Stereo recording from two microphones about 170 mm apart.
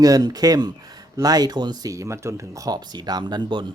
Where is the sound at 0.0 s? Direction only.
20° right (ahead or behind).